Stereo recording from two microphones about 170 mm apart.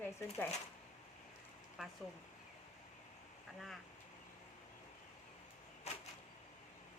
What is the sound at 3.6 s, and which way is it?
Speech, centre (ahead or behind).